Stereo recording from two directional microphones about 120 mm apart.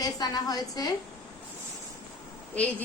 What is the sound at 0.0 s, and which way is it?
Speech, 30° left (ahead or behind).